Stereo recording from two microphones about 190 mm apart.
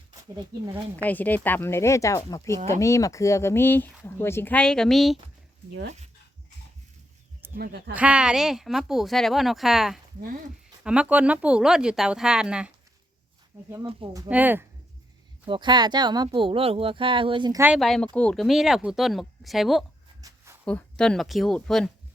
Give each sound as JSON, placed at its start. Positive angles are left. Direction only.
{"t": 0.3, "sound": "speech", "side_deg": -15}
{"t": 1.0, "sound": "speech", "side_deg": 10}
{"t": 7.5, "sound": "speech", "side_deg": -55}
{"t": 7.9, "sound": "speech", "side_deg": -5}
{"t": 13.8, "sound": "speech", "side_deg": -20}
{"t": 14.3, "sound": "speech", "side_deg": -10}
{"t": 15.4, "sound": "speech", "side_deg": -25}
{"t": 17.7, "sound": "speech", "side_deg": 0}
{"t": 20.2, "sound": "a sound", "side_deg": -15}
{"t": 20.7, "sound": "speech", "side_deg": 5}